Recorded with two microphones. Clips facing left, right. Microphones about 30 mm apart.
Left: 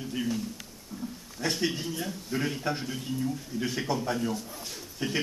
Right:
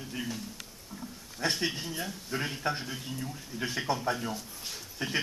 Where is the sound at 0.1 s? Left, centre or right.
Centre.